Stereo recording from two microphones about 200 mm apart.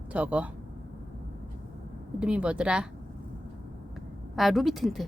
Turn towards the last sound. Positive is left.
turn(degrees=0)  # may be behind; listen again after turning